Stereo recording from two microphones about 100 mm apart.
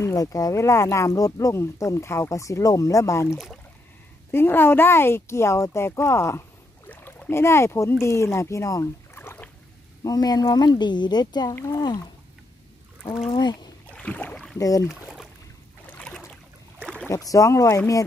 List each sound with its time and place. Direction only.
0.0 s speech: 35° left (ahead or behind)
6.9 s rowboat: 20° left (ahead or behind)
7.9 s speech: 25° left (ahead or behind)
9.2 s rowboat: 20° left (ahead or behind)
10.0 s speech: 40° left (ahead or behind)
13.3 s speech: 45° left (ahead or behind)
13.8 s boat: 15° left (ahead or behind)
14.6 s speech: 35° left (ahead or behind)
15.9 s boat: 10° left (ahead or behind)
17.1 s speech: 35° left (ahead or behind)